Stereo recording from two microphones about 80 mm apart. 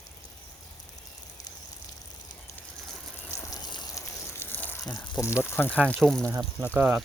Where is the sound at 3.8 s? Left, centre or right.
Left.